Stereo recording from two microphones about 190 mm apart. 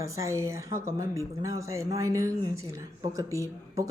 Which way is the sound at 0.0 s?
15° right (ahead or behind).